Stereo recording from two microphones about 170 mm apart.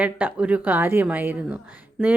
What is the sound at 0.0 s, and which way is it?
Speech, 10° right (ahead or behind).